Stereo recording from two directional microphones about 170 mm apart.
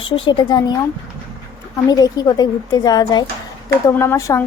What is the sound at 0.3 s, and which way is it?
Speech, 25° left (ahead or behind).